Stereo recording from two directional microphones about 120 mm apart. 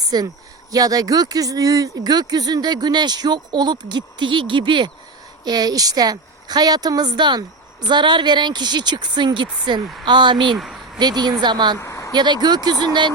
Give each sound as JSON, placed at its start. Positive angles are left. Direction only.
{"t": 0.1, "sound": "a woman's voice", "side_deg": -35}
{"t": 10.5, "sound": "speech", "side_deg": 0}
{"t": 10.9, "sound": "a woman's voice", "side_deg": -35}
{"t": 11.8, "sound": "vehicle", "side_deg": 25}
{"t": 12.1, "sound": "a woman's voice", "side_deg": -40}